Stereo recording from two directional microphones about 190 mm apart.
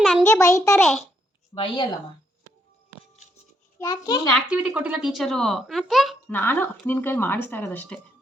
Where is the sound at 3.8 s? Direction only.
20° left (ahead or behind).